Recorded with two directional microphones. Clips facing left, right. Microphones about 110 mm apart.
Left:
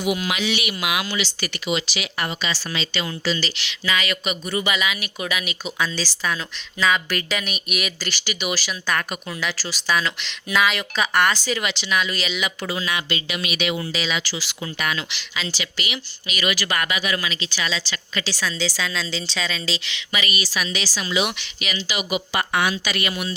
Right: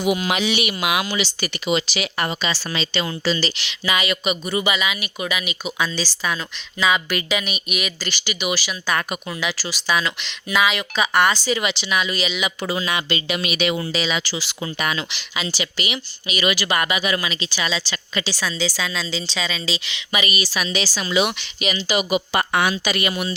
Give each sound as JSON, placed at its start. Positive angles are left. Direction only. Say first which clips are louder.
{"t": 0.0, "sound": "speech", "louder": "right 3 dB", "side_deg": -30}
{"t": 1.7, "sound": "speech", "louder": "right 4 dB", "side_deg": -35}
{"t": 3.7, "sound": "a woman's voice", "louder": "right 1 dB", "side_deg": -15}
{"t": 12.6, "sound": "speech", "louder": "right 3 dB", "side_deg": -25}
{"t": 15.1, "sound": "a woman's voice", "louder": "right 2 dB", "side_deg": -15}
{"t": 21.0, "sound": "speech", "louder": "right 3 dB", "side_deg": -40}
{"t": 22.7, "sound": "speech", "louder": "right 3 dB", "side_deg": -25}